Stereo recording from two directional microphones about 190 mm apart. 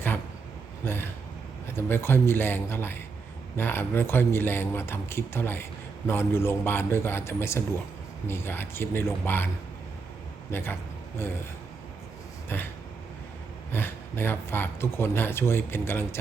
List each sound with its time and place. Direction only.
0.9 s a sound: 10° left (ahead or behind)
1.7 s speech: 10° left (ahead or behind)
10.5 s speech: 10° left (ahead or behind)
12.5 s speech: 10° left (ahead or behind)
13.7 s speech: 10° left (ahead or behind)